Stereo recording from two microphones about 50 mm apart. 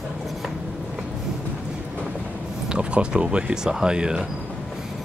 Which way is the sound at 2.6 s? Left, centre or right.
Centre.